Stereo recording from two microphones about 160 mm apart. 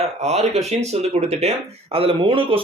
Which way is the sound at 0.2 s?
40° right (ahead or behind).